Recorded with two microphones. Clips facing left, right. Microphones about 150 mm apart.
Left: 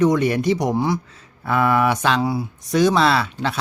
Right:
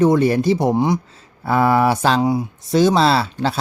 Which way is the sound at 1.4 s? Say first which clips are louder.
Right 3 dB; 30° right (ahead or behind).